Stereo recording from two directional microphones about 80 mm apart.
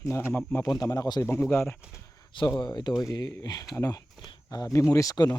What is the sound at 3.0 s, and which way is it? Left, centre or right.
Speech, left.